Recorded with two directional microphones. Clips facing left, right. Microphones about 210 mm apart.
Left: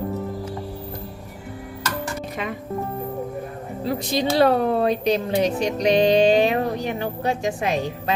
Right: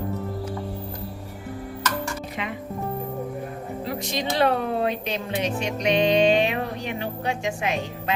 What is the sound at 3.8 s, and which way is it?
Speech, 35° left (ahead or behind).